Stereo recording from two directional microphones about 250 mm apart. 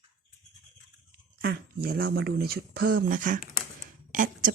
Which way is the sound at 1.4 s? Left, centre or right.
Right.